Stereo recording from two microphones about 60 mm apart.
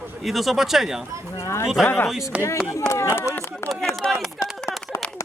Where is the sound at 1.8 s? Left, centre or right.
Left.